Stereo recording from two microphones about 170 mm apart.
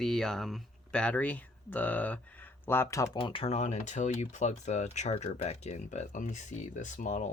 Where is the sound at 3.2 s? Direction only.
30° left (ahead or behind); by 7.3 s 45° left (ahead or behind).